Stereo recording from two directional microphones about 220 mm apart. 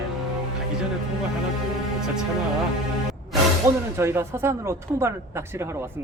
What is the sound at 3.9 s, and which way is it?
A man's voice, 10° right (ahead or behind).